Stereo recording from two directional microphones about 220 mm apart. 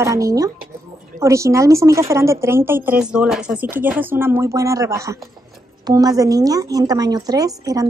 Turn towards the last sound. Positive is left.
turn(degrees=-15)  # may be behind; listen again after turning